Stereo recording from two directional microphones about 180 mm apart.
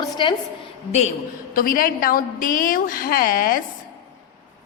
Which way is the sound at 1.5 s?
50° left (ahead or behind).